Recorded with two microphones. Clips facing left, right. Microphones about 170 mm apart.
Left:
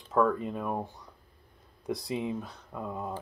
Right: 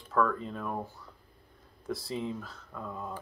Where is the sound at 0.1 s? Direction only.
20° left (ahead or behind).